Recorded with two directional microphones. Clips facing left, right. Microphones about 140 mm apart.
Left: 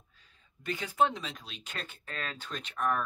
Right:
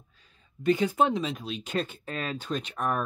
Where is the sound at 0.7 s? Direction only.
20° right (ahead or behind).